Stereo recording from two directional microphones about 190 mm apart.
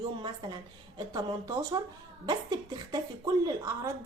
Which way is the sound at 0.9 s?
20° right (ahead or behind).